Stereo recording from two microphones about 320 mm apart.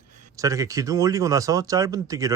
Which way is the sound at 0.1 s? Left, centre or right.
Right.